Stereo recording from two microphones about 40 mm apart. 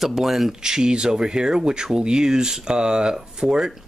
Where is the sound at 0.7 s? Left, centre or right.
Centre.